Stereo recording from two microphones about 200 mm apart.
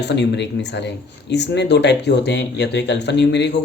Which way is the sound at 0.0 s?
60° left (ahead or behind).